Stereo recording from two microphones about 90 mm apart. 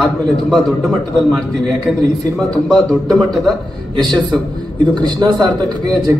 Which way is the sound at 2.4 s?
5° left (ahead or behind).